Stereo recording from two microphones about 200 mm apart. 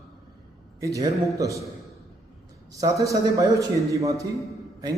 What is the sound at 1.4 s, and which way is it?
Speech, 15° right (ahead or behind).